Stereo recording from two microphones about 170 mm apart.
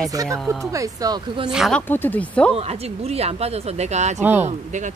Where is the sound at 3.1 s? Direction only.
35° right (ahead or behind).